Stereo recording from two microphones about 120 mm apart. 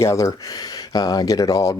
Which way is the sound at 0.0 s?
25° left (ahead or behind).